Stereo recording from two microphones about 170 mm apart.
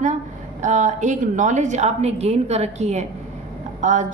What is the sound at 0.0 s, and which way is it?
A woman's voice, 45° right (ahead or behind).